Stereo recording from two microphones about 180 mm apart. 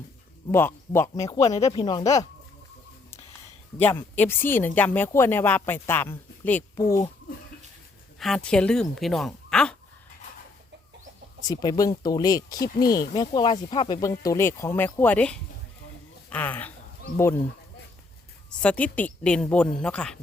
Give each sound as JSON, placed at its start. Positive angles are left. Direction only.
{"t": 0.5, "sound": "speech", "side_deg": 15}
{"t": 3.8, "sound": "speech", "side_deg": 10}
{"t": 8.2, "sound": "speech", "side_deg": 5}
{"t": 11.4, "sound": "speech", "side_deg": 20}
{"t": 18.6, "sound": "speech", "side_deg": 5}